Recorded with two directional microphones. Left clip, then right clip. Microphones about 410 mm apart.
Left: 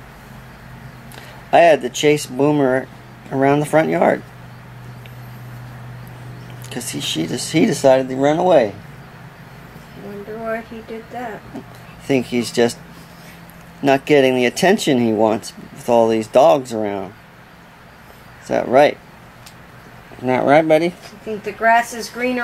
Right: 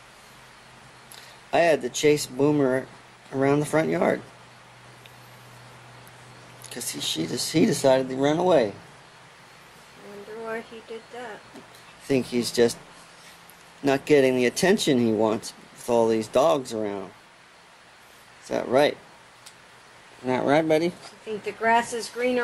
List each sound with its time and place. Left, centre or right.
1.5 s speech: centre
6.7 s speech: centre
12.1 s speech: centre
13.8 s speech: centre
18.5 s speech: centre
20.2 s speech: centre